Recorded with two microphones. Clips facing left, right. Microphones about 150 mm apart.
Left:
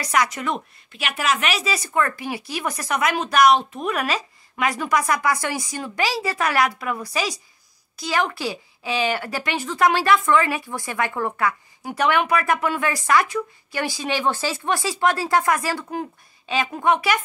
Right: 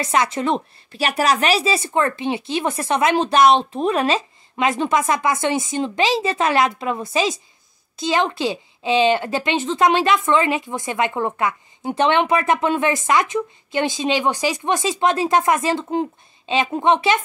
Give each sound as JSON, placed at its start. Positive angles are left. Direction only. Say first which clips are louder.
{"t": 0.0, "sound": "speech", "louder": "right 3 dB", "side_deg": -25}